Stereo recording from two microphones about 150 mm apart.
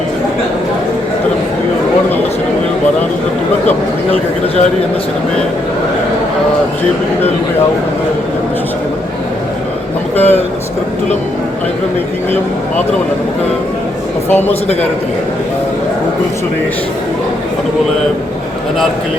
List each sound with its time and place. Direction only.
3.7 s a man's voice: 45° left (ahead or behind)
10.2 s speech: 15° left (ahead or behind)
14.3 s speech: 15° left (ahead or behind)